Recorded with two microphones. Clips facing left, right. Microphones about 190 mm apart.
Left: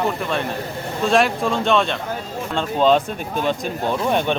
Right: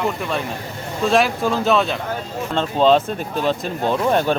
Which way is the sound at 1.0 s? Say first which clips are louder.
Right 1 dB; centre (ahead or behind).